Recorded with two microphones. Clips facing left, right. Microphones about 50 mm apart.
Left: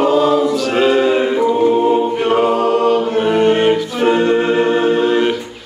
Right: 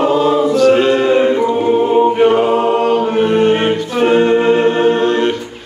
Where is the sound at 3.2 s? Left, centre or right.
Centre.